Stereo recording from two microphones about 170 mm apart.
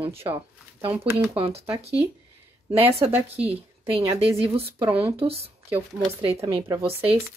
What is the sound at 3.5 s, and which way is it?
A woman's voice, 35° right (ahead or behind).